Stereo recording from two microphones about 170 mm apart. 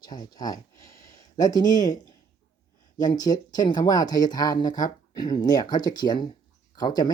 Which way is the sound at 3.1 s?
25° left (ahead or behind).